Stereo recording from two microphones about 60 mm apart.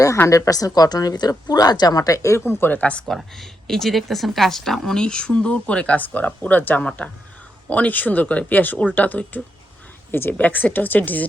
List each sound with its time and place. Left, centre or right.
0.3 s speech: left
2.6 s a woman's voice: left
3.1 s a woman's voice: centre; by 11.3 s left